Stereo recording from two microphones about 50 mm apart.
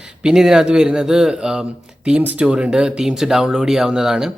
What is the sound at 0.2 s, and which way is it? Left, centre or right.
Speech, centre.